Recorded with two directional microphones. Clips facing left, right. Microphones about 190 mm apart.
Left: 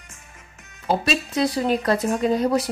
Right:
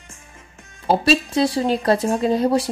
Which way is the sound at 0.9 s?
30° right (ahead or behind).